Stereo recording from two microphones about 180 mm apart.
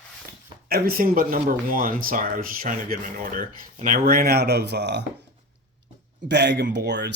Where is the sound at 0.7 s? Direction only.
55° right (ahead or behind).